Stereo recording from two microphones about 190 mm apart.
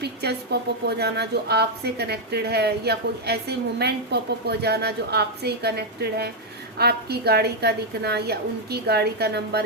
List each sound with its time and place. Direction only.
0.0 s a woman's voice: 60° right (ahead or behind)